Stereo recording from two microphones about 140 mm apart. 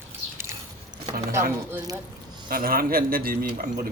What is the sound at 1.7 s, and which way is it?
Speech, 25° right (ahead or behind).